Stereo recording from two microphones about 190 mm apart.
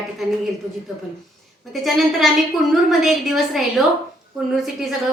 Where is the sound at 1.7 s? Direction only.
Centre (ahead or behind).